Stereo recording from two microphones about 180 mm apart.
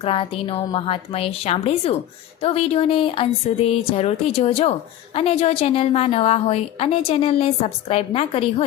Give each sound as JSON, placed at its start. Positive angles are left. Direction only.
{"t": 0.0, "sound": "speech", "side_deg": 30}